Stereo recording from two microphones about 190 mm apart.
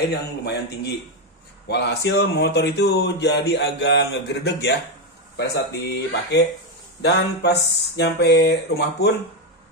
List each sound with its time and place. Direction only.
0.1 s speech: 60° left (ahead or behind)